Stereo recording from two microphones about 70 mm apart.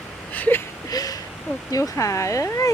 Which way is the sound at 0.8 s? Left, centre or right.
Left.